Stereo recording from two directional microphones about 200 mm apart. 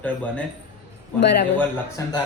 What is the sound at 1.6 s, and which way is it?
Speech, 15° left (ahead or behind).